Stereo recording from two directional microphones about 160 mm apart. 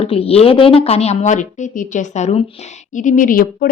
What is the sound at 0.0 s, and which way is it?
A woman's voice, 35° left (ahead or behind).